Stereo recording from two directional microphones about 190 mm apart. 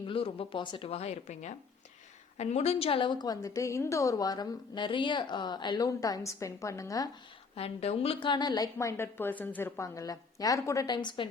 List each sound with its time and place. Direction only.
0.1 s a woman's voice: 30° left (ahead or behind)
7.5 s a woman's voice: 30° left (ahead or behind)